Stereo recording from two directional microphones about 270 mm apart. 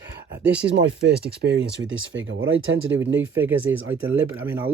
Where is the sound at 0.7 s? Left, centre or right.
Right.